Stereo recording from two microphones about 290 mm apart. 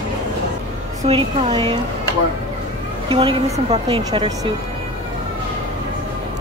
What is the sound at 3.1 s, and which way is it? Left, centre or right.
Speech, centre.